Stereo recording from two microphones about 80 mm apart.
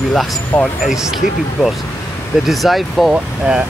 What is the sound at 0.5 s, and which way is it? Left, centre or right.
Speech, left.